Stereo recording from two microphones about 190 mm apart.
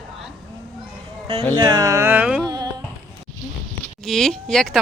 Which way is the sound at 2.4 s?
20° right (ahead or behind).